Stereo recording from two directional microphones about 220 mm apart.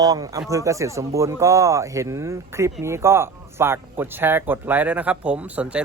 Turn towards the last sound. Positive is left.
turn(degrees=-5)  # may be behind; listen again after turning